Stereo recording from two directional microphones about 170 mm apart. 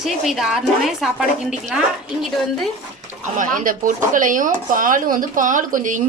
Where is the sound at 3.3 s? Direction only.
50° right (ahead or behind).